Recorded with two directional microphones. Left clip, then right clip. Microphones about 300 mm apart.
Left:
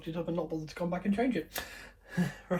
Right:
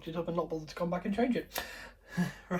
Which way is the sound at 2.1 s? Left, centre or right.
Centre.